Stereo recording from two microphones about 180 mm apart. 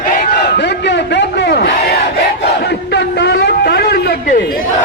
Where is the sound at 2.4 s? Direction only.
65° left (ahead or behind); by 4.6 s 50° left (ahead or behind).